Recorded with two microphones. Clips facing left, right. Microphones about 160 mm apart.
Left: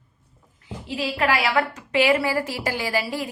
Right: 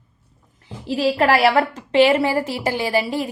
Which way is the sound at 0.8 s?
35° right (ahead or behind).